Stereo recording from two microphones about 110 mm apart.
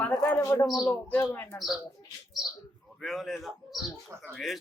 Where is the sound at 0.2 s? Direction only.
15° left (ahead or behind).